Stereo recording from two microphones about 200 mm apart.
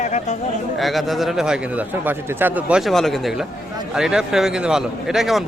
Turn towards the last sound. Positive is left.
turn(degrees=0)  # may be behind; listen again after turning